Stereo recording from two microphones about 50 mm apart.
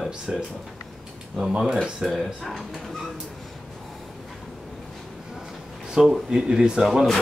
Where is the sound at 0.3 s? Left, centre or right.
Centre.